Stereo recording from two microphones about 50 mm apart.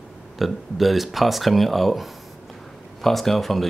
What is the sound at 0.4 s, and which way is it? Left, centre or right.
Speech, centre.